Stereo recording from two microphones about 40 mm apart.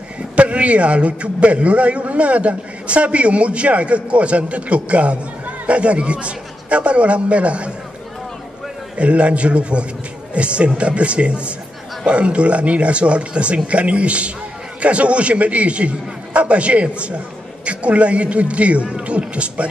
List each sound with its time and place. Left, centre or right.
0.4 s a man's voice: right
8.9 s a man's voice: right